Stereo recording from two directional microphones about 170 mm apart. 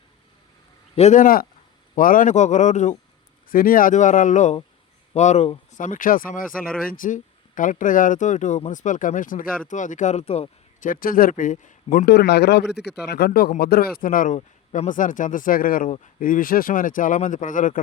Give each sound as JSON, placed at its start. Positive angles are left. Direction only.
{"t": 0.9, "sound": "speech", "side_deg": 45}
{"t": 3.5, "sound": "speech", "side_deg": 55}
{"t": 10.8, "sound": "speech", "side_deg": 55}
{"t": 12.0, "sound": "speech", "side_deg": 75}